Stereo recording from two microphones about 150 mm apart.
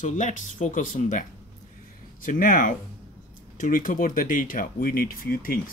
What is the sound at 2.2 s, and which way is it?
Speech, 65° left (ahead or behind).